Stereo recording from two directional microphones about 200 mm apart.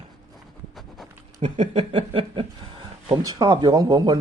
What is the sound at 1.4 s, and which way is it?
Speech, 30° right (ahead or behind).